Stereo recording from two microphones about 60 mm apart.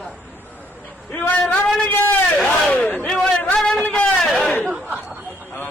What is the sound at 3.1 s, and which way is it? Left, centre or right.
Speech, centre.